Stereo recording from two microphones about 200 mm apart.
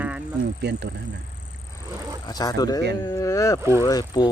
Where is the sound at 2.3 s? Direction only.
20° left (ahead or behind).